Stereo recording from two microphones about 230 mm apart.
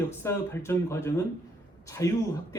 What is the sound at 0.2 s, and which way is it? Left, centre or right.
A man's voice, centre.